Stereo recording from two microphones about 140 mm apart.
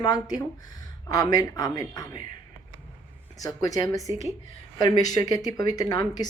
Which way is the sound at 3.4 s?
25° left (ahead or behind).